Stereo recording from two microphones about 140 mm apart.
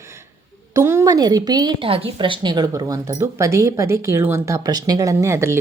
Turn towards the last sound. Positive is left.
turn(degrees=-20)  # may be behind; listen again after turning